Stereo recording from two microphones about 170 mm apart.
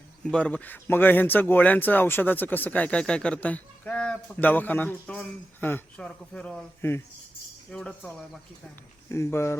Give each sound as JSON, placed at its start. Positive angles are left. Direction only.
{"t": 0.3, "sound": "speech", "side_deg": 5}
{"t": 9.0, "sound": "speech", "side_deg": 15}